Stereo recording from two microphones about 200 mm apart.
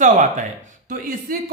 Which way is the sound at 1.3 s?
45° right (ahead or behind).